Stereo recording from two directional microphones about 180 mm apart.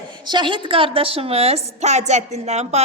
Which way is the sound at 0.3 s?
25° right (ahead or behind).